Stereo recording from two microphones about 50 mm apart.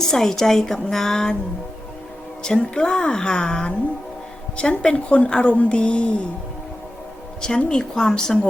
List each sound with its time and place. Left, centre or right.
0.1 s a woman's voice: centre
2.4 s a woman's voice: centre
7.4 s a woman's voice: centre